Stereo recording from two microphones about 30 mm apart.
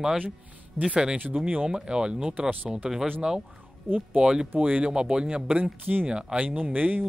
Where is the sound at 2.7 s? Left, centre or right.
Centre.